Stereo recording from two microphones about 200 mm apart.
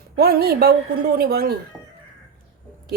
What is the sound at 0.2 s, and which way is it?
A woman's voice, 50° right (ahead or behind).